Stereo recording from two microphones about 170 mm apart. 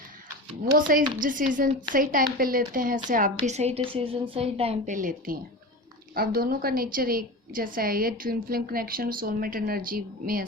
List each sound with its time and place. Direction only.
0.8 s a woman's voice: 55° right (ahead or behind)
3.4 s a woman's voice: 40° right (ahead or behind); by 10.4 s 55° right (ahead or behind)